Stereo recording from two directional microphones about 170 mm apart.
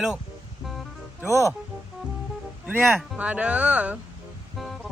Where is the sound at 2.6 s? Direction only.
5° right (ahead or behind).